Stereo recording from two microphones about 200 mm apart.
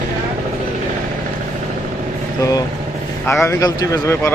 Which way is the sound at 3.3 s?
15° left (ahead or behind).